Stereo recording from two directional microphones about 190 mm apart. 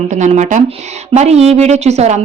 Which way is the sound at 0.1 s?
40° right (ahead or behind).